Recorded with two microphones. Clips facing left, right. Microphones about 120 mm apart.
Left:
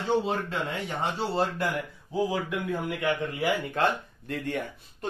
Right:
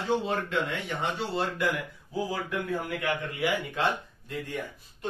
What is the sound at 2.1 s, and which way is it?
Speech, 20° left (ahead or behind).